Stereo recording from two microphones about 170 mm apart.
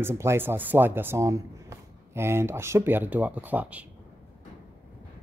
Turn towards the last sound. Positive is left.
turn(degrees=-10)  # may be behind; listen again after turning